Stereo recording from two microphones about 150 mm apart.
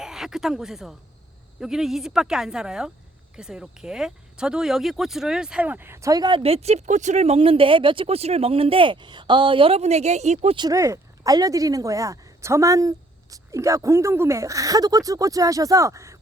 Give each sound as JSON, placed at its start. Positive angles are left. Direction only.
{"t": 0.0, "sound": "a woman's voice", "side_deg": -5}
{"t": 10.6, "sound": "speech", "side_deg": -20}